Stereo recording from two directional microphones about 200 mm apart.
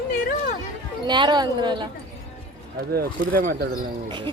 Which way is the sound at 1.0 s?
20° right (ahead or behind).